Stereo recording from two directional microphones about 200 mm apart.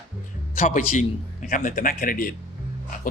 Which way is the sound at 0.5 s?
40° left (ahead or behind).